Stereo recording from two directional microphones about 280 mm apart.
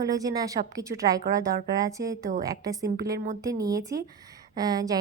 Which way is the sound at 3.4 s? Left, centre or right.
Centre.